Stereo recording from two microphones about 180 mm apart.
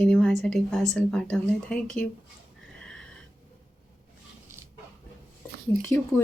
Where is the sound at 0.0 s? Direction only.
5° left (ahead or behind).